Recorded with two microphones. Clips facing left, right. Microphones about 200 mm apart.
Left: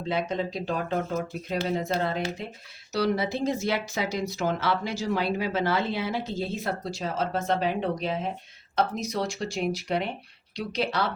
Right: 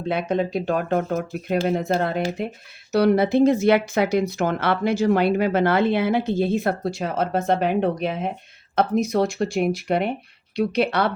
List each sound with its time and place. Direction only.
0.1 s speech: 60° right (ahead or behind)